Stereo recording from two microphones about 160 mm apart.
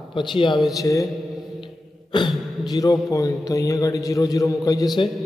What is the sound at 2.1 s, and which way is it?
A man's voice, 25° left (ahead or behind).